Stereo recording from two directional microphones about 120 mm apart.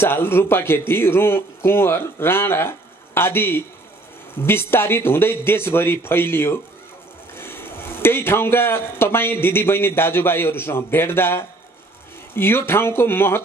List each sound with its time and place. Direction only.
0.0 s speech: 20° left (ahead or behind)